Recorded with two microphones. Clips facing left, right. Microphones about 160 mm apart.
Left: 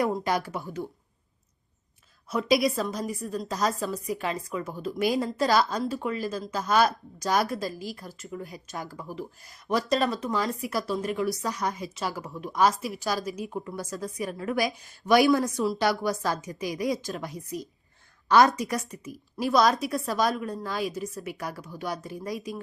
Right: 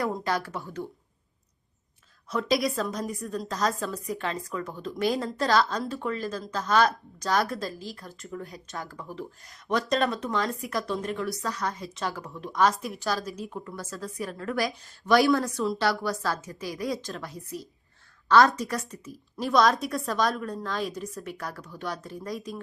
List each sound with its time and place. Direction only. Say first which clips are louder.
0.3 s speech: left 1 dB; 15° left (ahead or behind)
2.3 s a woman's voice: left 2 dB; 5° left (ahead or behind)
11.3 s a woman's voice: left 1 dB; 15° left (ahead or behind)